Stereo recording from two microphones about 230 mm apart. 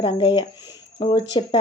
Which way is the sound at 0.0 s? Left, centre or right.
Centre.